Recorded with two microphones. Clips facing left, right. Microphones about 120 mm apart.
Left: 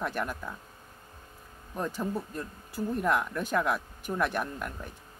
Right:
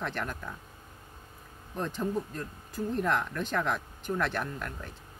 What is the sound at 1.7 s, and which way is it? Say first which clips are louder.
Speech: right 1 dB; 10° left (ahead or behind).